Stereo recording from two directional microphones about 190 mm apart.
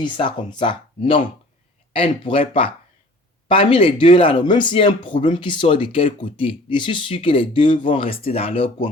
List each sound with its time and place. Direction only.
0.0 s speech: 25° left (ahead or behind)